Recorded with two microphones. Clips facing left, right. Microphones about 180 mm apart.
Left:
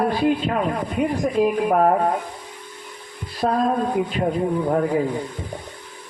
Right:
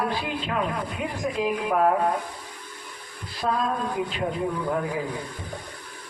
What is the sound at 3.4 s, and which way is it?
Speech, 45° left (ahead or behind).